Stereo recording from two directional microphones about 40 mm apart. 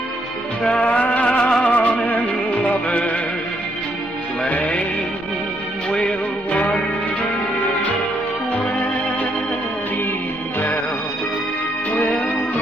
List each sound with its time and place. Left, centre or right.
0.7 s music: left
1.6 s music: left
4.5 s music: left
6.5 s music: left
11.9 s music: left